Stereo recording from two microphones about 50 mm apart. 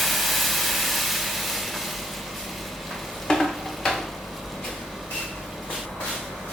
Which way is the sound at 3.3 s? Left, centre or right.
Centre.